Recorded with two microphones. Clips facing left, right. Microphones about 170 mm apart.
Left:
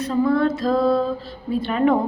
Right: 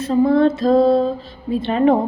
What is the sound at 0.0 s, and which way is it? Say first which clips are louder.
A woman's voice: right 4 dB; 25° right (ahead or behind).